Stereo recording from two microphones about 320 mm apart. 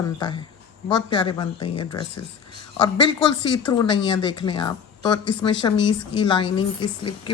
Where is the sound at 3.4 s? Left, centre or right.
Centre.